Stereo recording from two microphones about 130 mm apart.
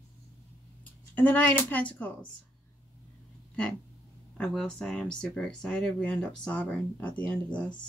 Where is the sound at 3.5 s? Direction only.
10° left (ahead or behind).